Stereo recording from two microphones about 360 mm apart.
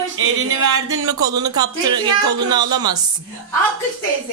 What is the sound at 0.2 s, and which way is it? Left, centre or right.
Music, right.